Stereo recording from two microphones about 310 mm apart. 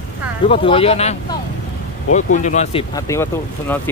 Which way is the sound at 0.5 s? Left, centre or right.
Centre.